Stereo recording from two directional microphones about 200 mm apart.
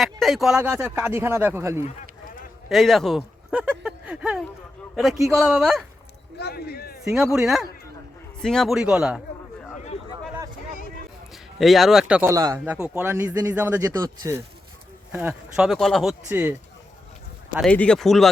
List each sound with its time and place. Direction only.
0.0 s speech: centre (ahead or behind)
2.6 s speech: centre (ahead or behind)
6.3 s speech: 55° left (ahead or behind)
7.0 s speech: centre (ahead or behind)
11.6 s speech: centre (ahead or behind); by 12.6 s 15° right (ahead or behind)
12.6 s speech: 5° right (ahead or behind)
15.1 s speech: 5° right (ahead or behind)
16.3 s speech: 10° right (ahead or behind)
17.7 s speech: 5° left (ahead or behind)